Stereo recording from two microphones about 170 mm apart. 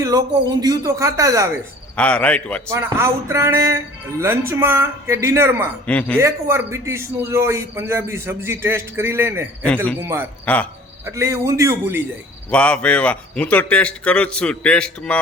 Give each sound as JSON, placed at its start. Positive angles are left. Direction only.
{"t": 0.1, "sound": "speech", "side_deg": -25}
{"t": 2.0, "sound": "a man's voice", "side_deg": 5}
{"t": 2.6, "sound": "a man's voice", "side_deg": -15}
{"t": 5.8, "sound": "a man's voice", "side_deg": 10}
{"t": 6.1, "sound": "a man's voice", "side_deg": -15}
{"t": 10.4, "sound": "speech", "side_deg": 5}
{"t": 11.0, "sound": "a man's voice", "side_deg": -15}
{"t": 12.5, "sound": "a man's voice", "side_deg": 5}